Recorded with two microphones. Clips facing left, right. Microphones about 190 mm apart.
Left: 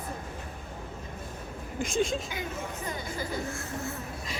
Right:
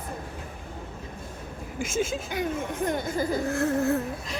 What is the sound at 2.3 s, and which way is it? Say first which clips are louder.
Speech: right 7 dB; 60° right (ahead or behind).